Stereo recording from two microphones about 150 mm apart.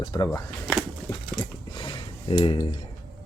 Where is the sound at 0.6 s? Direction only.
Centre (ahead or behind).